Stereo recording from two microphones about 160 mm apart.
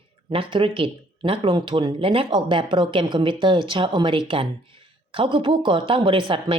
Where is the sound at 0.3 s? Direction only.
30° right (ahead or behind).